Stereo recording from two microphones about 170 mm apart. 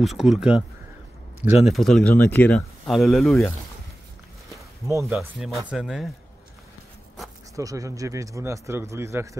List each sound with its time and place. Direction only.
0.0 s speech: centre (ahead or behind)
5.1 s speech: 5° right (ahead or behind)
7.5 s speech: 20° right (ahead or behind)